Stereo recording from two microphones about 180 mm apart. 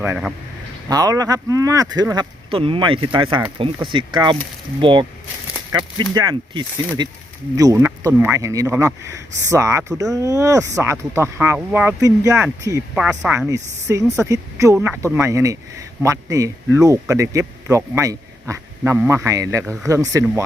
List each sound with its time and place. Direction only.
0.0 s speech: 10° right (ahead or behind)
0.9 s speech: 20° right (ahead or behind)
12.9 s speech: 5° right (ahead or behind)
13.5 s speech: 15° right (ahead or behind)